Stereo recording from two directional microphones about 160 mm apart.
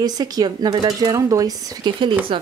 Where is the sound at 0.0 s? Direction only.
25° right (ahead or behind).